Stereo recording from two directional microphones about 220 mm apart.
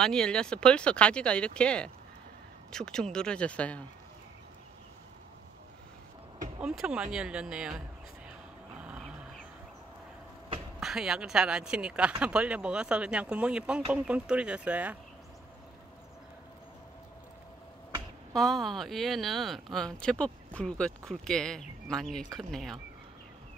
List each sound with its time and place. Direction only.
0.0 s speech: 5° left (ahead or behind)
6.6 s speech: 5° right (ahead or behind)
8.7 s a sound: 5° right (ahead or behind)
10.8 s speech: centre (ahead or behind)
18.3 s speech: centre (ahead or behind)